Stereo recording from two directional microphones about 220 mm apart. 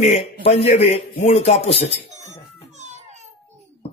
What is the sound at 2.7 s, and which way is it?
Children playing, 30° right (ahead or behind).